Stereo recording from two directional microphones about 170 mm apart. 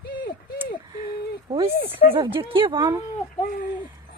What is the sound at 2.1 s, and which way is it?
Speech, 30° right (ahead or behind).